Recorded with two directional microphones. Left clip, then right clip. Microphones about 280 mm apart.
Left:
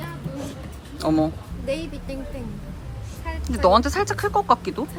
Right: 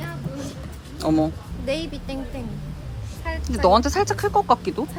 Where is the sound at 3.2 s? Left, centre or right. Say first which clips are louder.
Even; centre.